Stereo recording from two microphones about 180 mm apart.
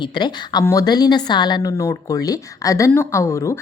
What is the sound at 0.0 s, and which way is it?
Speech, 25° left (ahead or behind).